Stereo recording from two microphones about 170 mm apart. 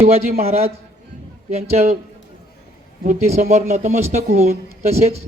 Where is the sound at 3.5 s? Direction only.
40° right (ahead or behind).